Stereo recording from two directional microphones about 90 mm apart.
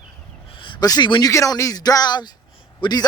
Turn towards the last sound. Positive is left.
turn(degrees=50)  # may be behind; listen again after turning